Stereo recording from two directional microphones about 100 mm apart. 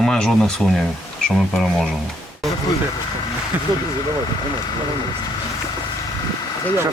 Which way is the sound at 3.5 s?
20° right (ahead or behind).